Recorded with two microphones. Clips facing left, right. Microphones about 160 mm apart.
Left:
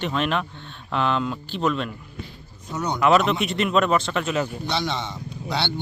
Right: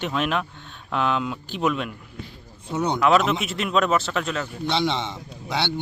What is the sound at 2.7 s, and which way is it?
Speech, 25° right (ahead or behind).